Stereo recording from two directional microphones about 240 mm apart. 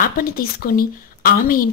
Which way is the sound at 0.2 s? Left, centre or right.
Left.